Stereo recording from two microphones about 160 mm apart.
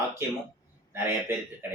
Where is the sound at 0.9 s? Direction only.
15° right (ahead or behind).